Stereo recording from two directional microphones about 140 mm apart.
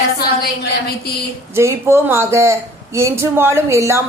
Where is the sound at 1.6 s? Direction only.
20° right (ahead or behind).